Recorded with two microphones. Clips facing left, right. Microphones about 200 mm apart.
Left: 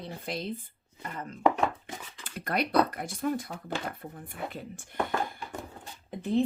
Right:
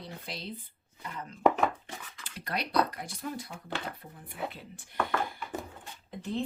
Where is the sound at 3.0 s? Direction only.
50° left (ahead or behind).